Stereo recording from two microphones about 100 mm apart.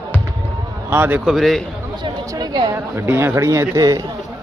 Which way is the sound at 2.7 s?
25° right (ahead or behind).